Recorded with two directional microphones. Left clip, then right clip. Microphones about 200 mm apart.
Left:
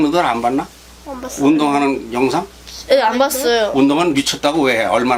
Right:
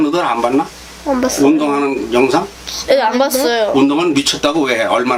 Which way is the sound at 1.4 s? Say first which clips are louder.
Left 2 dB; 55° left (ahead or behind).